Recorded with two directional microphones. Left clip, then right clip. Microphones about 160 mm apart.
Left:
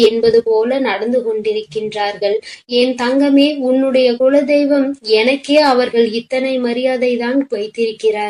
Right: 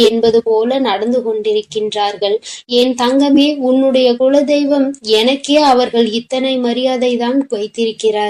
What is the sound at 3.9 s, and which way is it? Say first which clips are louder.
A woman's voice: left 1 dB; 40° right (ahead or behind).